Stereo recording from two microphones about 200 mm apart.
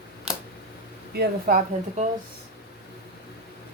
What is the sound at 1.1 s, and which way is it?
Speech, 50° right (ahead or behind).